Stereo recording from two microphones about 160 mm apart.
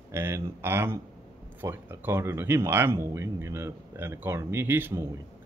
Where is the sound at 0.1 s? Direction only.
15° right (ahead or behind).